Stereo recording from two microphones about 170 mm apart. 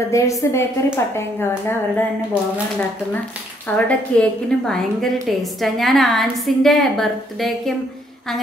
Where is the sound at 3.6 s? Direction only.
10° left (ahead or behind).